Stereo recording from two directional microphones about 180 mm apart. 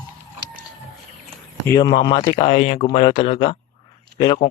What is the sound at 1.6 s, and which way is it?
Speech, 20° left (ahead or behind).